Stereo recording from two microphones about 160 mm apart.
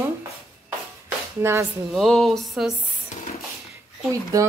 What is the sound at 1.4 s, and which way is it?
Speech, 15° right (ahead or behind).